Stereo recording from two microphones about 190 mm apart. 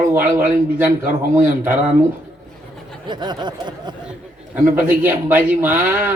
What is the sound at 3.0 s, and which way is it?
Speech, 25° right (ahead or behind).